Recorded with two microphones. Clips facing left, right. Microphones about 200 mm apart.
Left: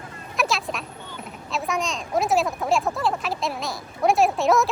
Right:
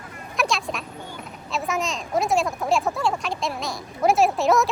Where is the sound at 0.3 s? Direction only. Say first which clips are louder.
Even; centre (ahead or behind).